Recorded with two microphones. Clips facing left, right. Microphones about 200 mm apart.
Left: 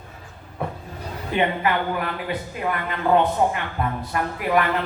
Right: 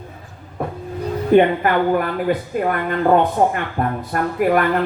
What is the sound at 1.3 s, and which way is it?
Speech, 50° right (ahead or behind).